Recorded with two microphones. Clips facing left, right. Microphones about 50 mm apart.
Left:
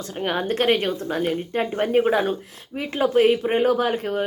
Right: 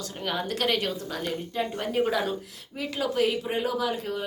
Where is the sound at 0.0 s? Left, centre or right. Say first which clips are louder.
Left 6 dB; left.